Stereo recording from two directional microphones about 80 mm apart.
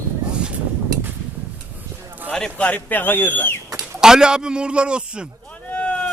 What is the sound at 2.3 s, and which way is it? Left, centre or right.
Speech, centre.